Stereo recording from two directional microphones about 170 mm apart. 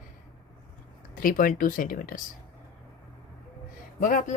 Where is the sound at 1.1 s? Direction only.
55° left (ahead or behind).